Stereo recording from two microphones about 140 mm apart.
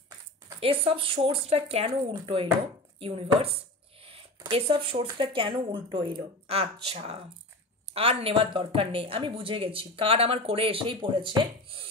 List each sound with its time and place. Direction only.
0.6 s speech: 45° right (ahead or behind)
3.0 s a sound: 45° right (ahead or behind)
4.5 s speech: 40° right (ahead or behind)